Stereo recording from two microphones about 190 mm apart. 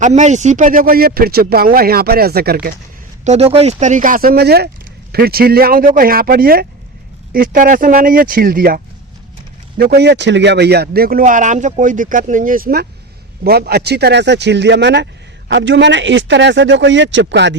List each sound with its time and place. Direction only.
0.0 s speech: 40° right (ahead or behind)
3.2 s speech: 35° right (ahead or behind); by 17.5 s 70° right (ahead or behind)